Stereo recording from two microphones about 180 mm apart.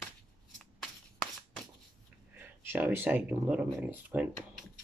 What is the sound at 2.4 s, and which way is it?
Speech, 10° right (ahead or behind).